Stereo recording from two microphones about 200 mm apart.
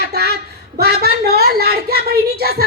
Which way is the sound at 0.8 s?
50° right (ahead or behind).